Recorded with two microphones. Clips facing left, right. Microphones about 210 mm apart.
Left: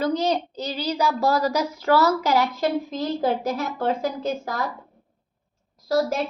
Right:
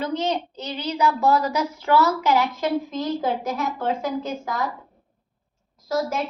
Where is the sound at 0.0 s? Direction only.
40° left (ahead or behind).